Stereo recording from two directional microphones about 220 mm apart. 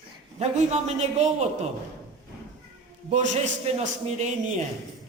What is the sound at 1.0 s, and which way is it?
Speech, 30° right (ahead or behind).